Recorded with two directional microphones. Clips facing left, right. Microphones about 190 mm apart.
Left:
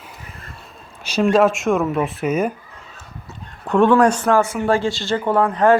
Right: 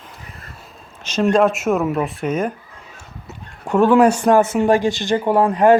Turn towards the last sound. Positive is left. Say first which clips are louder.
# right 2 dB
turn(degrees=-15)  # may be behind; listen again after turning